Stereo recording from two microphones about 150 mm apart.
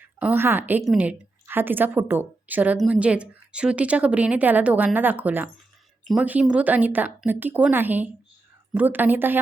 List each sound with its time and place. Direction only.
0.2 s a woman's voice: 10° right (ahead or behind)